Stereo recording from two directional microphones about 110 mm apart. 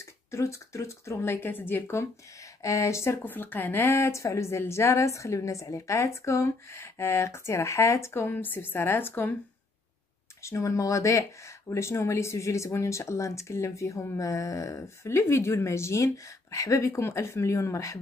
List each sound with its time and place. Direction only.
0.0 s speech: 25° left (ahead or behind)
10.4 s speech: 30° left (ahead or behind)